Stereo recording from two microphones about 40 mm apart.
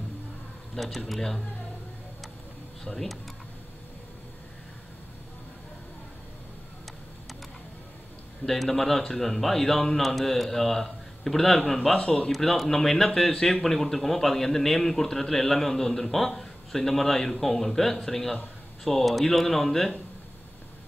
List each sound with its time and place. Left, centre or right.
0.7 s speech: centre
2.8 s a man's voice: centre
8.5 s a man's voice: centre
12.0 s speech: left
12.3 s speech: centre